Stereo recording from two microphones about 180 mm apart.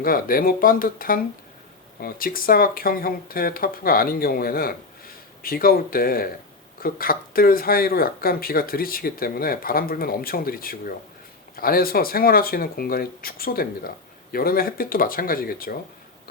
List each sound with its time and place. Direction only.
0.0 s speech: 55° left (ahead or behind)